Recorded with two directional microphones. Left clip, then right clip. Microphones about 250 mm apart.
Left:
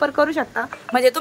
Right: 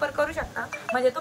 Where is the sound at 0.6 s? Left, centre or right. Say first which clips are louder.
Left 6 dB; left.